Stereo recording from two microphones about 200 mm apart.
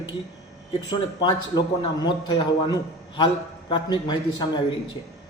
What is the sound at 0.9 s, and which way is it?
A man's voice, 20° left (ahead or behind).